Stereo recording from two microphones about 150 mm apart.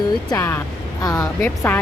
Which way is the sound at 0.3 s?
15° left (ahead or behind).